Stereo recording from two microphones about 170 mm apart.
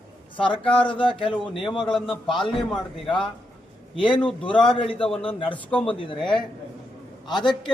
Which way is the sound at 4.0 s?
30° left (ahead or behind).